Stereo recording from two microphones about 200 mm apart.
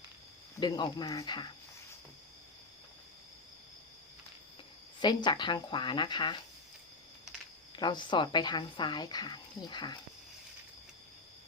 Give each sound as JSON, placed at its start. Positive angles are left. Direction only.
{"t": 0.6, "sound": "a woman's voice", "side_deg": 20}
{"t": 4.9, "sound": "a woman's voice", "side_deg": 20}
{"t": 7.8, "sound": "a woman's voice", "side_deg": 20}